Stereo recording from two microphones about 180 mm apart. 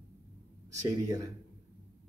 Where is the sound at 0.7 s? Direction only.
20° right (ahead or behind).